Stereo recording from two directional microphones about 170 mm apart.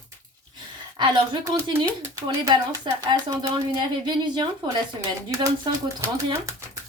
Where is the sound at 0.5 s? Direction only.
25° right (ahead or behind).